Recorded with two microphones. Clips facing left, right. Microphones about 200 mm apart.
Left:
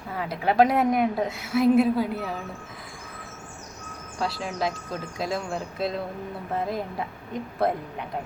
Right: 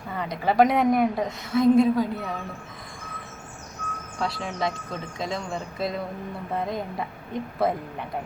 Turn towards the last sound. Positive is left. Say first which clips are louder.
# even
turn(degrees=0)  # may be behind; listen again after turning